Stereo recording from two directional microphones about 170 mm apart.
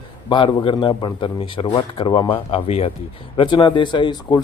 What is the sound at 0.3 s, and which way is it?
A man's voice, 30° left (ahead or behind).